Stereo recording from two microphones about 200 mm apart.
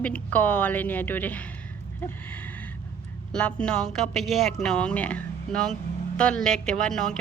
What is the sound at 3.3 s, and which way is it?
A woman's voice, 5° left (ahead or behind).